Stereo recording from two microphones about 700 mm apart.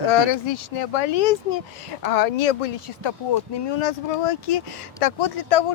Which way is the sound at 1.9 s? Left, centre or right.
Left.